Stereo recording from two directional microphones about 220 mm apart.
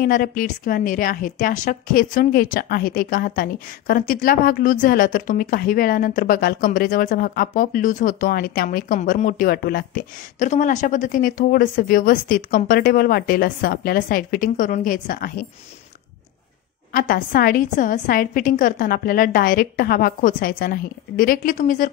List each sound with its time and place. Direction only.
0.0 s a woman's voice: 40° left (ahead or behind)
10.5 s a woman's voice: 30° left (ahead or behind)
16.9 s a woman's voice: 40° left (ahead or behind)